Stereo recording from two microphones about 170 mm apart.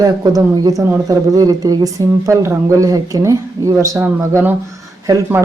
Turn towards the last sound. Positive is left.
turn(degrees=-15)  # may be behind; listen again after turning